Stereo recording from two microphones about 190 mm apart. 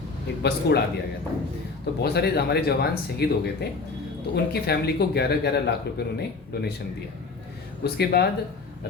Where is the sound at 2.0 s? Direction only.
60° left (ahead or behind).